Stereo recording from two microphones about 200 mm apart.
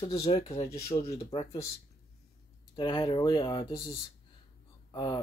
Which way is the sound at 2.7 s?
25° left (ahead or behind).